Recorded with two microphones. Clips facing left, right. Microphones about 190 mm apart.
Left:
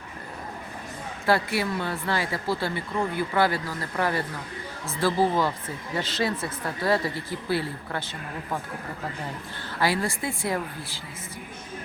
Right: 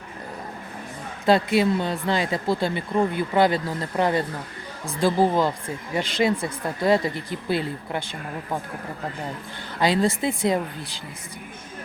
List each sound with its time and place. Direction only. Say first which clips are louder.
1.2 s speech: right 5 dB; 20° right (ahead or behind)
9.8 s speech: right 5 dB; 20° right (ahead or behind)